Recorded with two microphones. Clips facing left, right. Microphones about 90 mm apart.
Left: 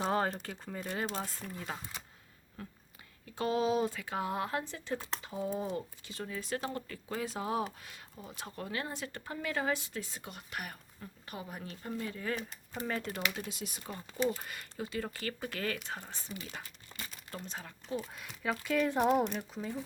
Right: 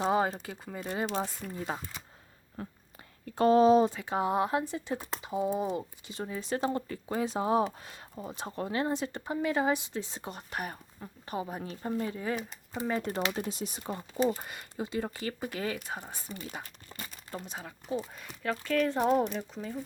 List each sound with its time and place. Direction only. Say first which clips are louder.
0.0 s speech: right 4 dB; 5° right (ahead or behind); by 3.8 s 40° right (ahead or behind)
3.8 s speech: right 5 dB; 25° right (ahead or behind)
13.1 s speech: right 5 dB; 35° right (ahead or behind)
14.4 s speech: right 3 dB; 20° right (ahead or behind)
17.4 s speech: right 2 dB; 10° right (ahead or behind)
18.1 s speech: right 2 dB; centre (ahead or behind)